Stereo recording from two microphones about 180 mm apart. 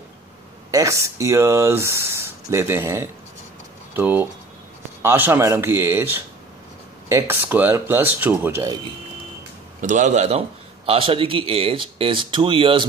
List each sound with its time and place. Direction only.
0.7 s speech: 15° right (ahead or behind)
9.8 s a man's voice: 45° right (ahead or behind); by 12.8 s 30° right (ahead or behind)